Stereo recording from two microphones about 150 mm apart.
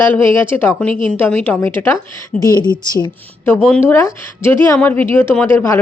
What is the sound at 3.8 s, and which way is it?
A woman's voice, 15° left (ahead or behind).